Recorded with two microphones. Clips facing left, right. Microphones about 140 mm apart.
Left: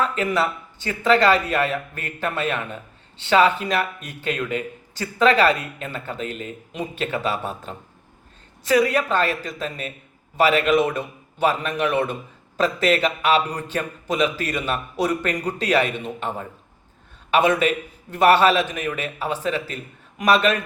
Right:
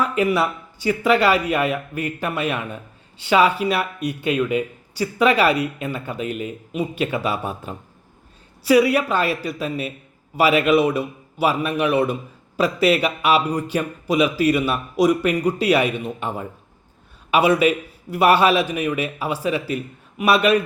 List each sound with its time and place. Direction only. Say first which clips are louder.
0.0 s speech: right 2 dB; 10° right (ahead or behind)